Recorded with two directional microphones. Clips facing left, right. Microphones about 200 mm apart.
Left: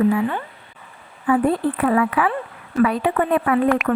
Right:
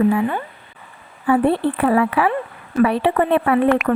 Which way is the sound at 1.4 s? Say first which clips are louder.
Right 2 dB; 70° right (ahead or behind).